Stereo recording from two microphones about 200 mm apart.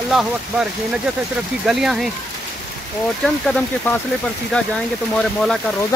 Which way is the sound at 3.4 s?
5° left (ahead or behind).